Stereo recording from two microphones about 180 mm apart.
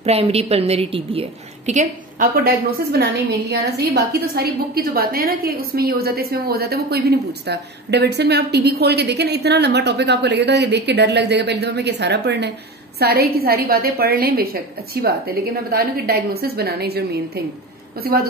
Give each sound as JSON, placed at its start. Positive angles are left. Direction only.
{"t": 0.0, "sound": "a woman's voice", "side_deg": -35}
{"t": 1.7, "sound": "a woman's voice", "side_deg": -45}